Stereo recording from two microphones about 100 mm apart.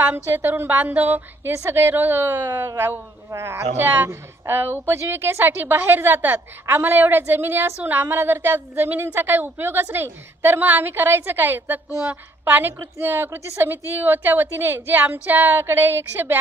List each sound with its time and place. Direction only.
0.3 s a woman's voice: 20° right (ahead or behind)